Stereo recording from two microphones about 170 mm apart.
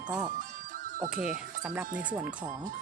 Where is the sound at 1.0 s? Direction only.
50° right (ahead or behind).